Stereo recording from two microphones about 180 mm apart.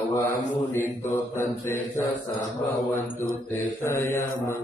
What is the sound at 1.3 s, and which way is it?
Mantra, 15° left (ahead or behind).